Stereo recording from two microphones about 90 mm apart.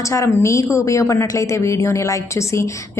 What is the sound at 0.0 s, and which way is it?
A woman's voice, 35° left (ahead or behind).